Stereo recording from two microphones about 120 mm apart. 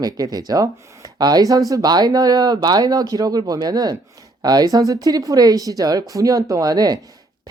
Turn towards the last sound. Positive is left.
turn(degrees=-35)  # may be behind; listen again after turning